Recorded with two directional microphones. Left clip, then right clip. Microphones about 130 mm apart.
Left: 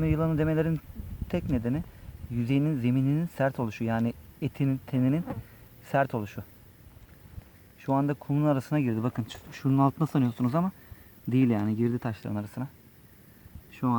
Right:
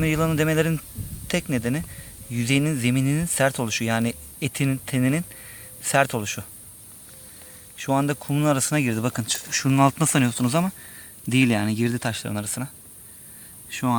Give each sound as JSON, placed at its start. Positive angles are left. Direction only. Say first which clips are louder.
{"t": 0.0, "sound": "speech", "louder": "right 6 dB", "side_deg": -15}
{"t": 7.8, "sound": "speech", "louder": "right 5 dB", "side_deg": -5}